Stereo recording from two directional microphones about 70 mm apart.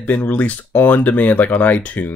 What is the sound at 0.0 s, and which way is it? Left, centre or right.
Speech, left.